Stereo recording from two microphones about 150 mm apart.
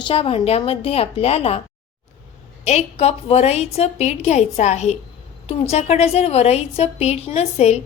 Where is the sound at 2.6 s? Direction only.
45° left (ahead or behind).